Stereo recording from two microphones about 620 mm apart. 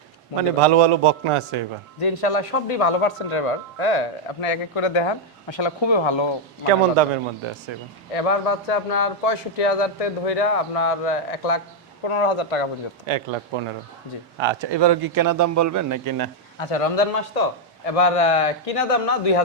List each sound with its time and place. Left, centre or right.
0.6 s a man's voice: right
2.0 s speech: left
6.7 s a man's voice: right
8.1 s a man's voice: left
12.0 s speech: left
13.1 s a man's voice: right
16.6 s speech: left